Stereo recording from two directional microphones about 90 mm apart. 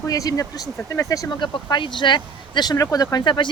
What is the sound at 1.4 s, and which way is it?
Speech, 60° left (ahead or behind).